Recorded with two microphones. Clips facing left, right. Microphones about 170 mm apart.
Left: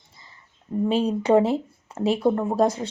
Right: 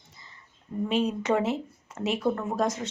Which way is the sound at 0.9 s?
35° left (ahead or behind).